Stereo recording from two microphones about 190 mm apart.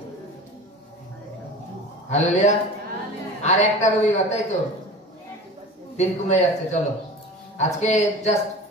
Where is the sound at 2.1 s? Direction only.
40° left (ahead or behind).